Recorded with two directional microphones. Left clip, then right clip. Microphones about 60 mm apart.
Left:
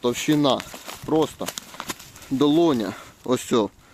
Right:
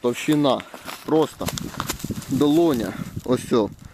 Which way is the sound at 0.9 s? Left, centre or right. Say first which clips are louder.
Right 2 dB; right.